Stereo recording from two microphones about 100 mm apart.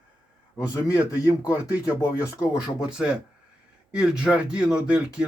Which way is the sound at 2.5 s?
10° right (ahead or behind).